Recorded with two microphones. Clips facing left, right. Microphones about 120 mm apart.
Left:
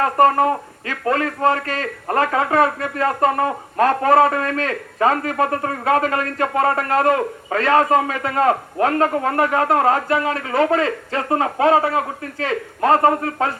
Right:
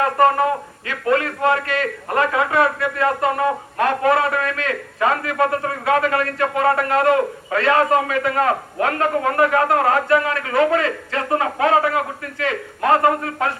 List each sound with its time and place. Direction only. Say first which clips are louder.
0.2 s a man's voice: left 2 dB; 35° left (ahead or behind)